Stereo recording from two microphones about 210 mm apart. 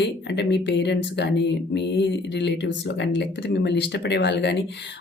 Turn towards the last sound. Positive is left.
turn(degrees=55)  # may be behind; listen again after turning